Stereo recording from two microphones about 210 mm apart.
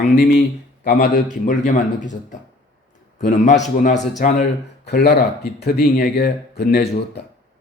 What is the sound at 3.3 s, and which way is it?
Speech, 35° left (ahead or behind).